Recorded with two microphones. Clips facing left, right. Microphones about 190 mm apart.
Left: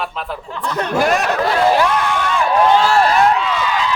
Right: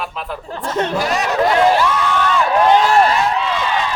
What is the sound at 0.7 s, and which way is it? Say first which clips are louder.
Speech: right 2 dB; 25° right (ahead or behind).